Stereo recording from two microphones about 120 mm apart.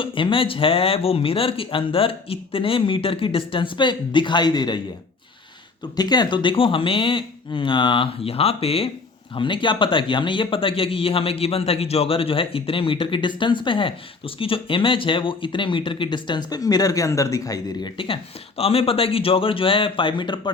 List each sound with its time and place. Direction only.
0.0 s speech: 45° left (ahead or behind)
6.0 s speech: 35° left (ahead or behind); by 8.9 s 55° left (ahead or behind)
9.3 s speech: 45° left (ahead or behind)
17.9 s speech: 45° left (ahead or behind)